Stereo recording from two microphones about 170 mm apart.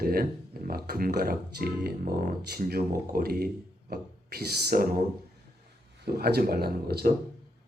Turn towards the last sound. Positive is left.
turn(degrees=-65)  # may be behind; listen again after turning